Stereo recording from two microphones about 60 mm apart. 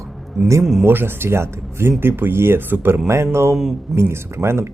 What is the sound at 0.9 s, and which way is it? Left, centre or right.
Speech, right.